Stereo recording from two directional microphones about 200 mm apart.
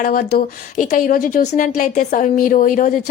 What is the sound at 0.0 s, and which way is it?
A woman's voice, 50° left (ahead or behind).